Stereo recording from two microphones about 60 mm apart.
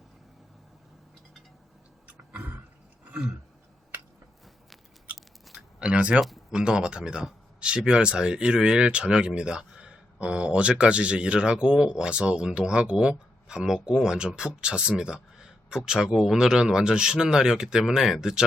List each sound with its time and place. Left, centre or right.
2.0 s throat clearing: right
3.0 s a sound: right
5.1 s scissors: centre
5.8 s speech: centre
6.1 s speech: centre
6.5 s speech: centre